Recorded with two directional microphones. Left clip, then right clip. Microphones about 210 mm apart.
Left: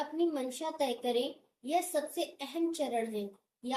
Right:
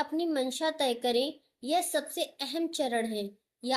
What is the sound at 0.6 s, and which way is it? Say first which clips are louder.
A woman's voice: right 3 dB; 50° right (ahead or behind).